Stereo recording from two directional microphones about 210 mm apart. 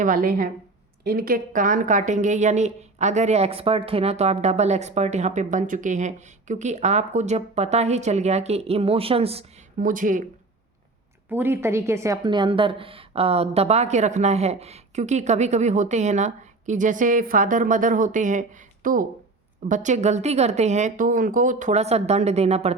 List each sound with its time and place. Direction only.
0.0 s a woman's voice: 40° right (ahead or behind)
11.3 s speech: 10° right (ahead or behind); by 22.7 s 30° right (ahead or behind)